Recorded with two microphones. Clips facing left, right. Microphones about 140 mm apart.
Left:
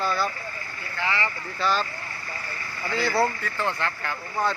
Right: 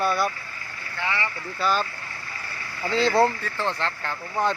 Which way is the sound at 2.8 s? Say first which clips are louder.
Right 4 dB; 20° right (ahead or behind).